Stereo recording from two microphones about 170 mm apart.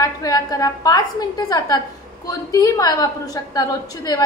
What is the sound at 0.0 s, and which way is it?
A woman's voice, 20° left (ahead or behind).